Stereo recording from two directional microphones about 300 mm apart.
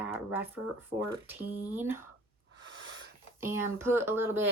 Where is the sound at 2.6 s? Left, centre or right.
Right.